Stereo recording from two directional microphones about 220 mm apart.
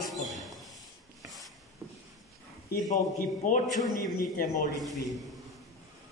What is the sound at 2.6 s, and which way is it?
A man's voice, 35° left (ahead or behind).